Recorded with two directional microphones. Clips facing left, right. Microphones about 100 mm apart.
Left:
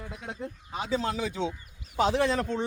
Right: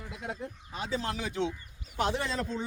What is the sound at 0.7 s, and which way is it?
Speech, 90° left.